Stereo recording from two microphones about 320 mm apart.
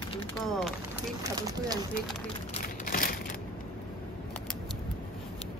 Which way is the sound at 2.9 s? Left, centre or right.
Left.